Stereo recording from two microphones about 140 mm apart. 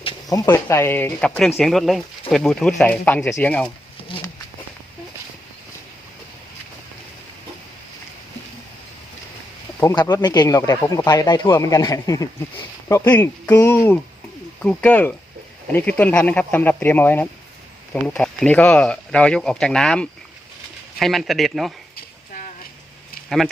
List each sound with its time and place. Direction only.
0.4 s speech: 20° left (ahead or behind)
4.1 s a sound: 40° left (ahead or behind)
10.2 s speech: 30° left (ahead or behind); by 21.7 s centre (ahead or behind)